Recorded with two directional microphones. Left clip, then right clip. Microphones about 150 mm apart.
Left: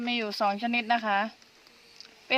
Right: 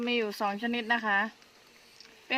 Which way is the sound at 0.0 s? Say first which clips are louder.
Left 2 dB; 15° left (ahead or behind).